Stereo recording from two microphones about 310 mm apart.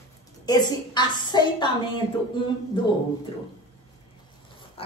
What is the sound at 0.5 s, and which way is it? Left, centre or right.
Speech, centre.